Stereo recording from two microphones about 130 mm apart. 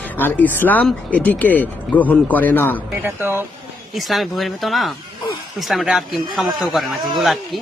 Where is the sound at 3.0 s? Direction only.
15° right (ahead or behind).